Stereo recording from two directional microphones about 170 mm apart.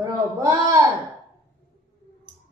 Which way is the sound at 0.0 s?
20° right (ahead or behind).